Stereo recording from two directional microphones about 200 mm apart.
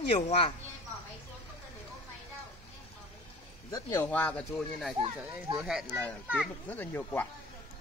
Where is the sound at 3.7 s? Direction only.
20° left (ahead or behind).